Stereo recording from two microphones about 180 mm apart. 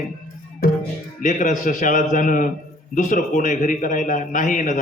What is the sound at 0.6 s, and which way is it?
Music, 55° left (ahead or behind).